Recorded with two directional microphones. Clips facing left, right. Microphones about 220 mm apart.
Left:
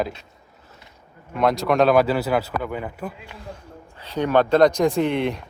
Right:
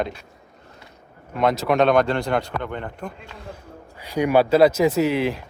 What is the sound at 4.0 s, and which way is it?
Speech, 10° right (ahead or behind).